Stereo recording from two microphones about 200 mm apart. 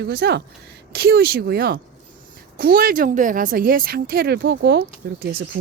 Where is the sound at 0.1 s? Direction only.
55° right (ahead or behind).